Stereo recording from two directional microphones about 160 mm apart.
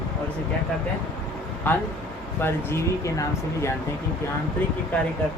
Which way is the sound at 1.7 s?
10° left (ahead or behind).